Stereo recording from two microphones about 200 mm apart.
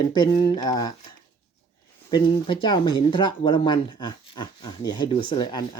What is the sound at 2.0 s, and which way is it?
Speech, 25° left (ahead or behind).